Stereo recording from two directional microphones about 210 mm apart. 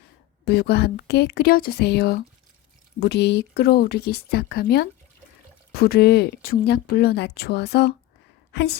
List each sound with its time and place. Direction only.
0.4 s speech: 50° left (ahead or behind)